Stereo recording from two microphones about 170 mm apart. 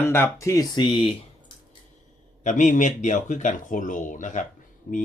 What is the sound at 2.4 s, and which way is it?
Speech, 45° left (ahead or behind).